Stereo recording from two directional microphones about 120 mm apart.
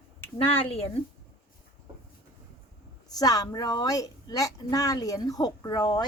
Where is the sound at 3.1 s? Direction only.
30° left (ahead or behind).